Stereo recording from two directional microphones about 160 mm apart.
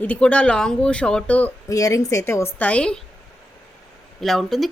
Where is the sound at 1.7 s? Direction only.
20° left (ahead or behind).